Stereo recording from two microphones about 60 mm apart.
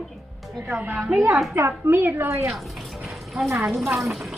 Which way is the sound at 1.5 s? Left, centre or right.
Right.